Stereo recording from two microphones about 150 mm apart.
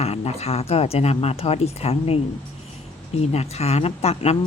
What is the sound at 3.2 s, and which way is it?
Speech, 45° left (ahead or behind).